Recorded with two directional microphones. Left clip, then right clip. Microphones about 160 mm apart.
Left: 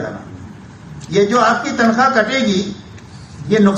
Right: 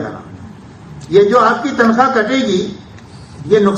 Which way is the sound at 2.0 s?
50° right (ahead or behind).